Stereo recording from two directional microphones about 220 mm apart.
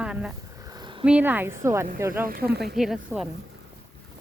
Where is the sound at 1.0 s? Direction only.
5° right (ahead or behind).